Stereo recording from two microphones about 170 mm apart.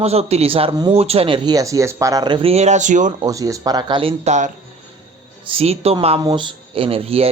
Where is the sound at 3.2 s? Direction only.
20° right (ahead or behind); by 6.1 s 35° right (ahead or behind).